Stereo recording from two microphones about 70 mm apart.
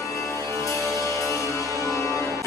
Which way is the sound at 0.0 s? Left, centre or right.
Left.